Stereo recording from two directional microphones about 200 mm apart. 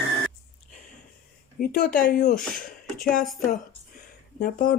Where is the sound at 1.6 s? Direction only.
45° left (ahead or behind).